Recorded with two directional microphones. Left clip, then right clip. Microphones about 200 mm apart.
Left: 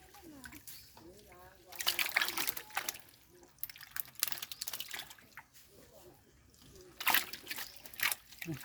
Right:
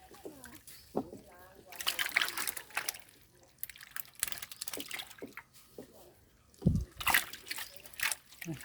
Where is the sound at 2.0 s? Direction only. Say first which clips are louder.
Right 1 dB; 5° right (ahead or behind).